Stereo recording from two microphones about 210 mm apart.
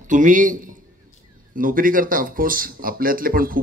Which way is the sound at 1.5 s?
40° right (ahead or behind).